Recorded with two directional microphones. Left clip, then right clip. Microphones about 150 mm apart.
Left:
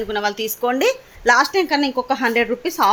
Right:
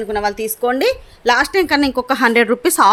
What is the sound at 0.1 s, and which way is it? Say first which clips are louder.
A woman's voice: right 4 dB; 25° right (ahead or behind).